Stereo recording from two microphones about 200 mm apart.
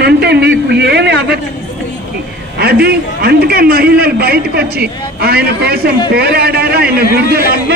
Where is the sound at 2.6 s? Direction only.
50° right (ahead or behind).